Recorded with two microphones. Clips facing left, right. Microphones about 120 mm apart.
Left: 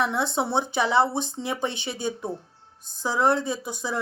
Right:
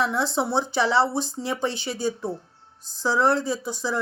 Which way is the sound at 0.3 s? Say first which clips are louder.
Right 1 dB; 20° left (ahead or behind).